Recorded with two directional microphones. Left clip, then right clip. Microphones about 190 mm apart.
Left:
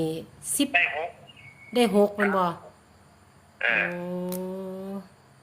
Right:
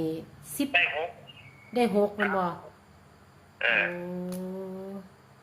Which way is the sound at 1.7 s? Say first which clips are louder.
Left 4 dB; 50° left (ahead or behind).